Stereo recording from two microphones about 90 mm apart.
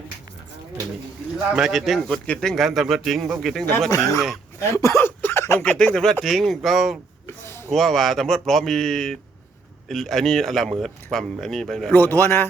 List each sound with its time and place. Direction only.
1.5 s speech: 5° right (ahead or behind)
2.2 s speech: 10° left (ahead or behind)
3.8 s speech: 40° left (ahead or behind)
5.6 s speech: 10° left (ahead or behind)
7.3 s a sound: 25° left (ahead or behind)
7.8 s speech: 5° left (ahead or behind)
11.9 s speech: 20° left (ahead or behind)